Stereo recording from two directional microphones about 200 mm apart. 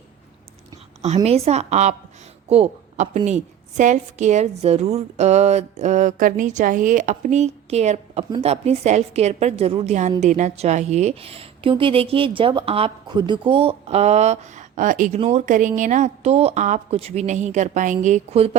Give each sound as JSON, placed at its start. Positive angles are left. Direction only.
{"t": 1.0, "sound": "a woman's voice", "side_deg": -30}